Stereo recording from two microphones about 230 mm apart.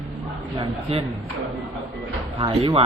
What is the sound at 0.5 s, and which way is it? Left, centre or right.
Speech, right.